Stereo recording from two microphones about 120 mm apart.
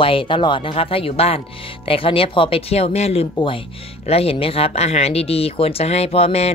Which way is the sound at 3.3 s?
45° left (ahead or behind).